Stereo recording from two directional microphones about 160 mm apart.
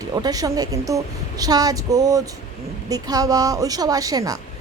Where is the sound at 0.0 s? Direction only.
25° right (ahead or behind).